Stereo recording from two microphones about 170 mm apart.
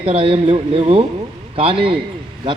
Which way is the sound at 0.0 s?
35° right (ahead or behind).